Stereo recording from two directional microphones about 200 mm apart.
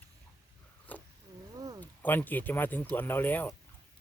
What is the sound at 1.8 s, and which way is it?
Speech, 10° left (ahead or behind).